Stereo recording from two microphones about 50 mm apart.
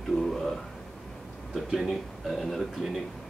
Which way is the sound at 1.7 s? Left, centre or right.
Centre.